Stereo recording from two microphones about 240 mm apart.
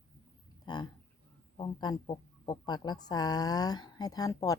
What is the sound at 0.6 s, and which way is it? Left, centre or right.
Speech, centre.